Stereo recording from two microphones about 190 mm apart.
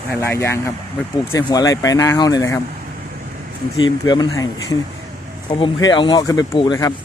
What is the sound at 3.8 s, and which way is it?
Speech, 20° left (ahead or behind).